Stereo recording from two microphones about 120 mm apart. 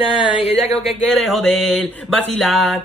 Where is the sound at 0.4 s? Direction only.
55° left (ahead or behind).